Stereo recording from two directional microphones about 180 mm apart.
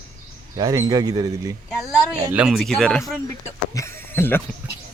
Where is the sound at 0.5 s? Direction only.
20° right (ahead or behind).